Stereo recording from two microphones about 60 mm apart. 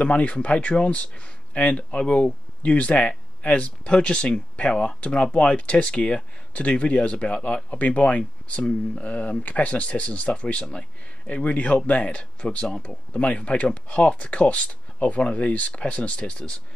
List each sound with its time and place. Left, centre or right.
0.0 s speech: left